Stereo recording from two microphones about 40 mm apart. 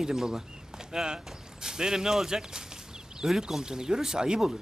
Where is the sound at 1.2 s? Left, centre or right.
Centre.